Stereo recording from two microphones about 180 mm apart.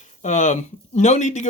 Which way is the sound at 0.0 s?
40° left (ahead or behind).